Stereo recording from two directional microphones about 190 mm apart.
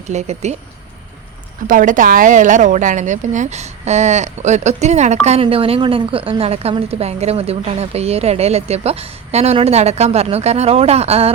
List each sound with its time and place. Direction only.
0.1 s a woman's voice: 35° right (ahead or behind)
1.6 s a woman's voice: 45° right (ahead or behind)